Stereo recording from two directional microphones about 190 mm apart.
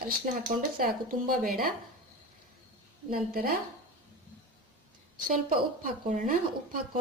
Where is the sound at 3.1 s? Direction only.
50° right (ahead or behind).